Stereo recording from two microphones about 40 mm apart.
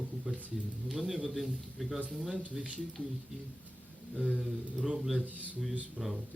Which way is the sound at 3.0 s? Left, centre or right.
Left.